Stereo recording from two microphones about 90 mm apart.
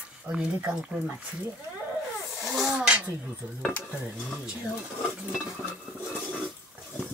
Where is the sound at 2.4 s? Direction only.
Centre (ahead or behind).